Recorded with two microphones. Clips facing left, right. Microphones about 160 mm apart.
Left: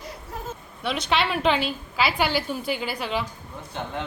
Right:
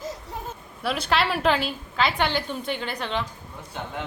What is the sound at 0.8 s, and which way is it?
A woman's voice, centre (ahead or behind).